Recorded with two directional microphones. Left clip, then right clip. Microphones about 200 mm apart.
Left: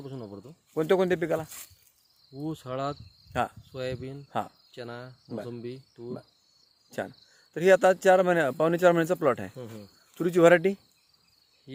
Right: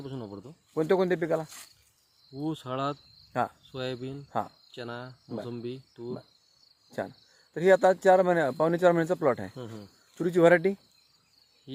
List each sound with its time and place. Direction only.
0.0 s speech: centre (ahead or behind)
0.7 s speech: 5° left (ahead or behind)
1.5 s speech: 35° left (ahead or behind)
2.3 s speech: centre (ahead or behind)
7.5 s speech: 10° left (ahead or behind)